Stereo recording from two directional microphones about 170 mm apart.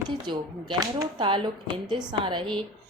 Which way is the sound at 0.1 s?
25° right (ahead or behind).